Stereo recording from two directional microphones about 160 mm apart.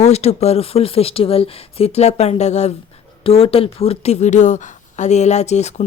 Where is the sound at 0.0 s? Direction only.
40° left (ahead or behind).